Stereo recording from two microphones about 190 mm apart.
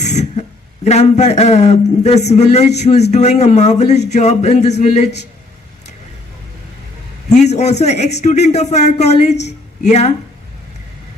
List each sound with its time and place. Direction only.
0.0 s a sound: 35° left (ahead or behind)
0.9 s a man's voice: 35° left (ahead or behind)
7.3 s a man's voice: 35° left (ahead or behind)